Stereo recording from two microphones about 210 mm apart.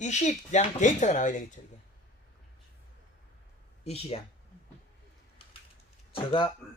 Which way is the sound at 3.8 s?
30° left (ahead or behind).